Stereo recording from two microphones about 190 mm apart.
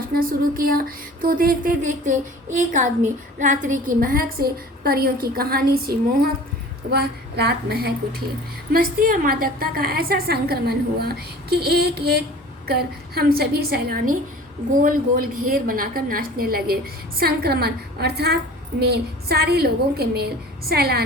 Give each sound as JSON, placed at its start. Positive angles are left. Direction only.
{"t": 0.1, "sound": "a woman's voice", "side_deg": -50}
{"t": 6.9, "sound": "a woman's voice", "side_deg": -60}